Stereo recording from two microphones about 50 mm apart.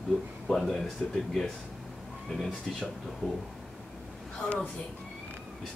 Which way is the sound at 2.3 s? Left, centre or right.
Centre.